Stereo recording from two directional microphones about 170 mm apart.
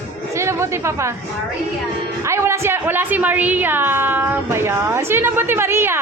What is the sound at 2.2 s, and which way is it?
A woman's voice, 15° right (ahead or behind).